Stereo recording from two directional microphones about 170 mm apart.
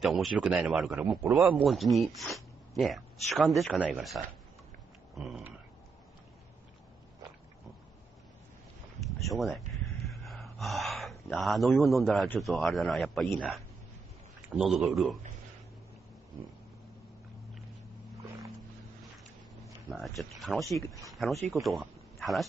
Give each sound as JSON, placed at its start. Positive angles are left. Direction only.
{"t": 0.0, "sound": "speech", "side_deg": 0}
{"t": 9.3, "sound": "speech", "side_deg": 0}
{"t": 14.6, "sound": "speech", "side_deg": 0}
{"t": 20.2, "sound": "speech", "side_deg": 0}